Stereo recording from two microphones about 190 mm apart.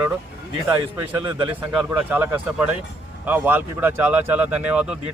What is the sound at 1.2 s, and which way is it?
Speech, 25° right (ahead or behind).